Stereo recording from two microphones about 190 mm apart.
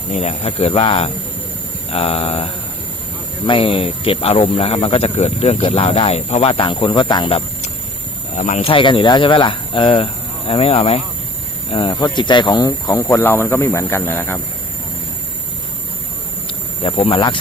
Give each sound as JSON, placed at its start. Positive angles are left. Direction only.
{"t": 0.1, "sound": "speech", "side_deg": 35}
{"t": 17.1, "sound": "speech", "side_deg": 25}